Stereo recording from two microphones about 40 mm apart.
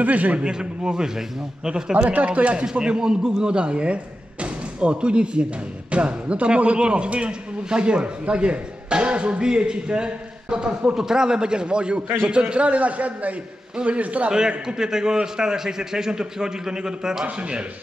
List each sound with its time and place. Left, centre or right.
0.0 s a man's voice: right
0.4 s speech: right
2.0 s a man's voice: right
2.6 s a man's voice: right
14.7 s a man's voice: centre
17.4 s speech: right